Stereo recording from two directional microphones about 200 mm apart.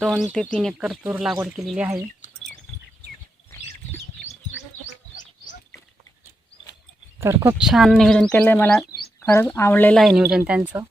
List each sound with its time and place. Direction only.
0.0 s speech: 5° right (ahead or behind)
4.9 s a sound: 40° left (ahead or behind)
7.2 s speech: 10° right (ahead or behind)